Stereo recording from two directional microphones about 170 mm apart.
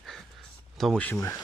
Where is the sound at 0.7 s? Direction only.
Centre (ahead or behind).